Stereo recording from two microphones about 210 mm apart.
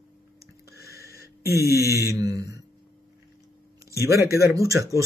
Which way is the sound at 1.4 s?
15° left (ahead or behind).